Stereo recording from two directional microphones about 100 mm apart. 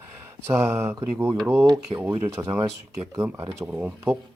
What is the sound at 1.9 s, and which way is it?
Speech, 70° right (ahead or behind).